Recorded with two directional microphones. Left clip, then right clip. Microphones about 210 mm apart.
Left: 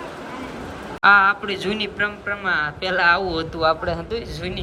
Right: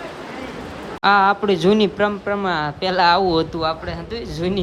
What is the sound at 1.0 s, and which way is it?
Speech, 15° right (ahead or behind).